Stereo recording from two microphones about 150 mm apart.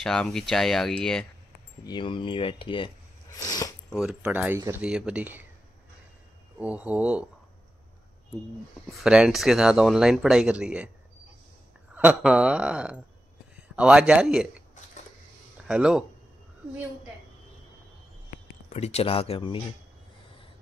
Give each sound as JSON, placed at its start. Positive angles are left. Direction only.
{"t": 0.0, "sound": "speech", "side_deg": 5}
{"t": 1.9, "sound": "speech", "side_deg": 30}
{"t": 3.3, "sound": "a sound", "side_deg": 25}
{"t": 3.9, "sound": "speech", "side_deg": 0}
{"t": 4.2, "sound": "speech", "side_deg": -15}
{"t": 6.6, "sound": "speech", "side_deg": -10}
{"t": 8.9, "sound": "speech", "side_deg": -5}
{"t": 11.9, "sound": "speech", "side_deg": -10}
{"t": 15.6, "sound": "speech", "side_deg": -5}
{"t": 18.7, "sound": "speech", "side_deg": 45}